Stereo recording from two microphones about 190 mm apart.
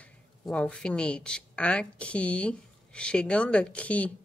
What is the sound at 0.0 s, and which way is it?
Speech, 5° left (ahead or behind).